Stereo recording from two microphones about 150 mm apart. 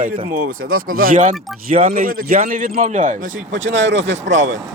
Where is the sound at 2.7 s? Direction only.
55° right (ahead or behind).